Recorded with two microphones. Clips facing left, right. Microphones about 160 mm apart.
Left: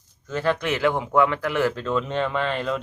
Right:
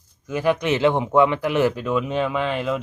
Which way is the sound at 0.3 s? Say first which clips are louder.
Right 3 dB; 15° right (ahead or behind).